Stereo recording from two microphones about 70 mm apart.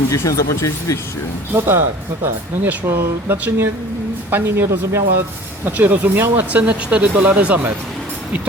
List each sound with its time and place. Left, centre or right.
0.1 s speech: left
1.5 s speech: right
5.6 s speech: right